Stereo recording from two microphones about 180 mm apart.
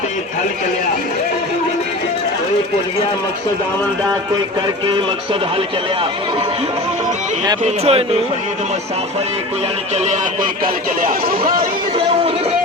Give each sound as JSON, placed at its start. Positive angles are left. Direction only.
{"t": 4.9, "sound": "a man's voice", "side_deg": -30}
{"t": 7.6, "sound": "speech", "side_deg": -35}
{"t": 9.9, "sound": "speech", "side_deg": -40}
{"t": 10.6, "sound": "speech", "side_deg": -50}